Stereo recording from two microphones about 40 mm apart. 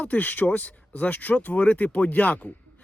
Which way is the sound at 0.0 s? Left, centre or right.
Left.